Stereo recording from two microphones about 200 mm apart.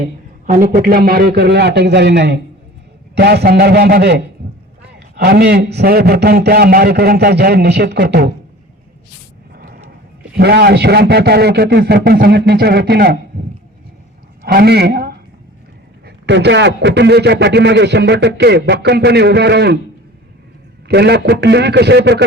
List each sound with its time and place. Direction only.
0.4 s a man's voice: 45° right (ahead or behind)
9.6 s vehicle: 50° right (ahead or behind)
10.3 s a man's voice: 55° right (ahead or behind)
14.4 s a man's voice: 50° right (ahead or behind)
20.8 s a man's voice: 55° right (ahead or behind)